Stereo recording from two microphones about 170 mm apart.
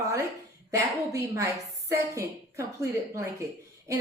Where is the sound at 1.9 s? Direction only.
15° right (ahead or behind).